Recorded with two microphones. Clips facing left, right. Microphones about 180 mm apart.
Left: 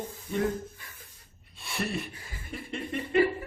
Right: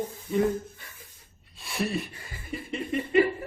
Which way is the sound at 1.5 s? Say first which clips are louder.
Right 3 dB; centre (ahead or behind).